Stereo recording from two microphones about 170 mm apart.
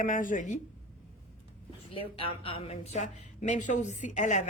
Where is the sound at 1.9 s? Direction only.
30° left (ahead or behind).